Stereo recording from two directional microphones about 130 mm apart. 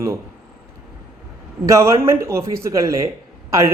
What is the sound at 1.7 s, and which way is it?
A man's voice, 20° right (ahead or behind).